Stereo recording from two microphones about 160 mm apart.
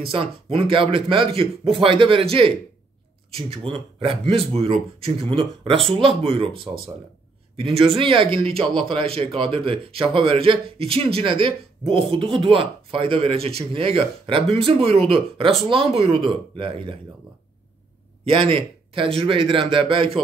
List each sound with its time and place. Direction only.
0.0 s speech: 35° right (ahead or behind)
3.3 s speech: 35° right (ahead or behind)
18.2 s a man's voice: 35° right (ahead or behind)